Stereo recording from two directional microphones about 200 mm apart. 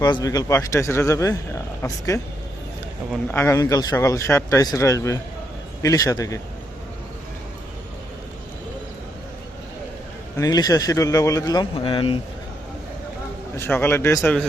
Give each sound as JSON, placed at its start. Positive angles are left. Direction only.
{"t": 0.0, "sound": "speech", "side_deg": 20}
{"t": 3.3, "sound": "speech", "side_deg": 15}
{"t": 10.3, "sound": "speech", "side_deg": 20}
{"t": 13.6, "sound": "speech", "side_deg": 10}